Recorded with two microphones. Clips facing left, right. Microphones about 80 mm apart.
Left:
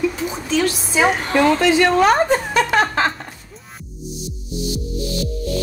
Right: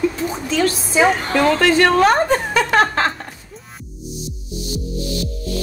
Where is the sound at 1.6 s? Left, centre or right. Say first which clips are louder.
Right 1 dB; right.